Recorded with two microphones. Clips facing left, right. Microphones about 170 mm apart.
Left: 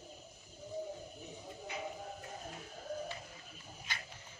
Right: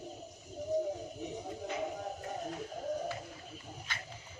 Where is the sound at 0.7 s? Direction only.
80° right.